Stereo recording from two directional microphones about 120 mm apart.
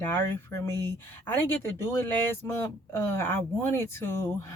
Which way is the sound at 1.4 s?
20° left (ahead or behind).